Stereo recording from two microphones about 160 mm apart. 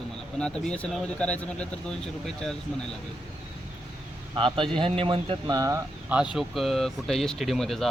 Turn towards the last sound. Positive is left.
turn(degrees=0)  # may be behind; listen again after turning